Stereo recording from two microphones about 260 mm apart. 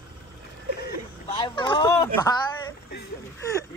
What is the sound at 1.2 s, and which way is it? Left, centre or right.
Speech, centre.